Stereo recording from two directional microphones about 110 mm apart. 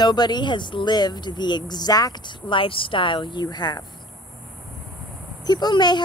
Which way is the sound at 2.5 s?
55° left (ahead or behind).